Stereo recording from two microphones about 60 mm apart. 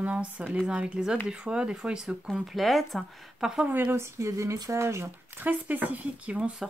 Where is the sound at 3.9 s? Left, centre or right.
Right.